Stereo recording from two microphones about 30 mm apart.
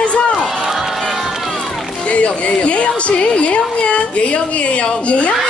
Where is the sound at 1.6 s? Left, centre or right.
Centre.